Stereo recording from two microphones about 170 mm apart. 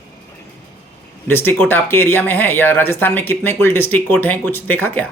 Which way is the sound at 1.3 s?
15° left (ahead or behind).